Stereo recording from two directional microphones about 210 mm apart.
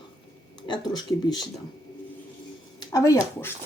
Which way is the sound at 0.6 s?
20° left (ahead or behind).